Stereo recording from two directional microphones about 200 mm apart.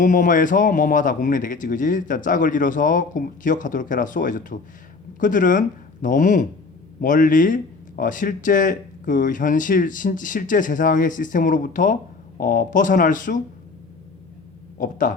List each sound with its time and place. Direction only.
0.0 s speech: 40° left (ahead or behind)
14.8 s speech: 40° left (ahead or behind)